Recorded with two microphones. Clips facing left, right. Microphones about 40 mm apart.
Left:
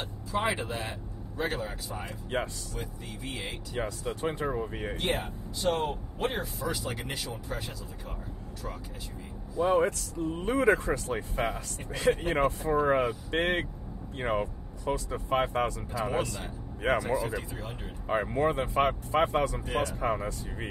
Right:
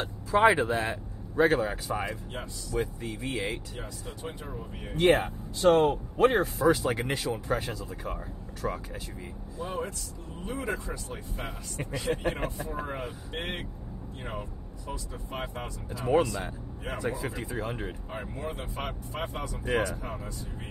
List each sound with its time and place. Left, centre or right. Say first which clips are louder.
0.3 s speech: right 8 dB; right
2.7 s speech: right 8 dB; right
3.7 s speech: left 7 dB; left
5.0 s speech: right 11 dB; right
6.6 s speech: right 9 dB; right
9.6 s speech: left 10 dB; left
17.5 s speech: right 6 dB; right
18.0 s speech: left 9 dB; left
19.6 s speech: right 2 dB; right
20.0 s speech: left 8 dB; left